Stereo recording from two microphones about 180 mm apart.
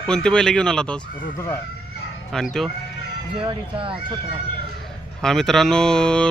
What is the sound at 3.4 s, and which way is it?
Speech, 30° right (ahead or behind).